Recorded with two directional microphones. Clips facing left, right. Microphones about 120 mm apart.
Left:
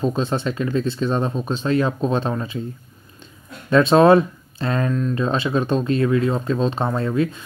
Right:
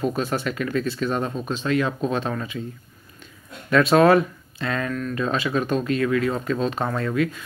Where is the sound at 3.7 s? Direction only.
30° left (ahead or behind).